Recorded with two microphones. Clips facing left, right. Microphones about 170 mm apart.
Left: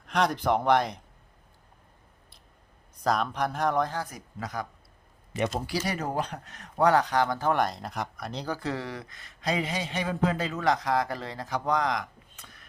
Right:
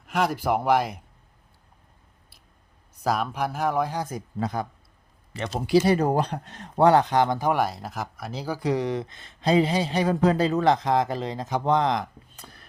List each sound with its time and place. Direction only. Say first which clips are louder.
0.0 s speech: right 1 dB; 5° right (ahead or behind)
3.0 s speech: right 1 dB; 5° right (ahead or behind)
4.0 s speech: right 8 dB; 30° right (ahead or behind)